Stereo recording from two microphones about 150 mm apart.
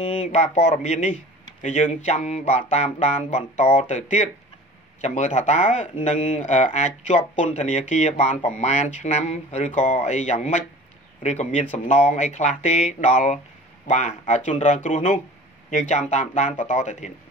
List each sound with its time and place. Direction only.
0.0 s speech: 45° left (ahead or behind)